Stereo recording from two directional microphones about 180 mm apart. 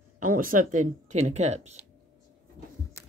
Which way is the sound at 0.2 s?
50° right (ahead or behind).